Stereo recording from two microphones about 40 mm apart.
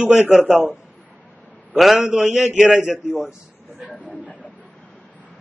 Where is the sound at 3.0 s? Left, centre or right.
Left.